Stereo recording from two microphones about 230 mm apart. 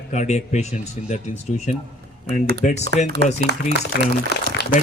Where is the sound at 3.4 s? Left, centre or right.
Left.